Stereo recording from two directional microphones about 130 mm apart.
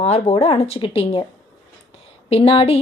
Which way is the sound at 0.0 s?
55° left (ahead or behind).